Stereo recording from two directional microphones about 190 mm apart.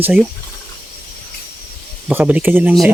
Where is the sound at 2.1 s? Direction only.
10° right (ahead or behind).